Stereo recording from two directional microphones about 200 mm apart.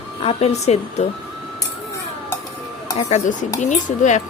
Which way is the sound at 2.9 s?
35° left (ahead or behind).